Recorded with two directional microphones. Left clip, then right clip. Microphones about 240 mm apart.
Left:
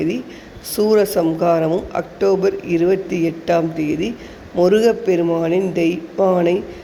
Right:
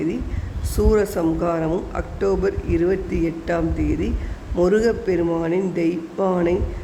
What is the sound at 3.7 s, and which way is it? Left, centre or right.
Speech, right.